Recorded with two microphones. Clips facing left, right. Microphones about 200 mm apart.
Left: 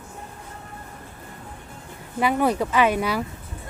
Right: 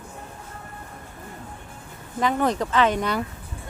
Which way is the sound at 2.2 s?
10° left (ahead or behind).